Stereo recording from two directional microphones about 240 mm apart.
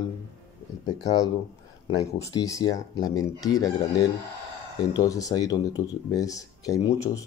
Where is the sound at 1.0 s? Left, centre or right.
Centre.